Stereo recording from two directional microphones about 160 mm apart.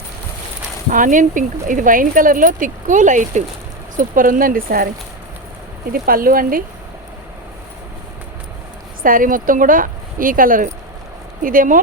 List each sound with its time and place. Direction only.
0.9 s speech: 55° right (ahead or behind)
5.9 s speech: 65° right (ahead or behind)
9.0 s speech: 60° right (ahead or behind)